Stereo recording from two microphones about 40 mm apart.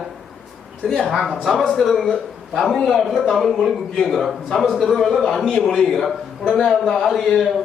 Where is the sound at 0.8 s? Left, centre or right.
Centre.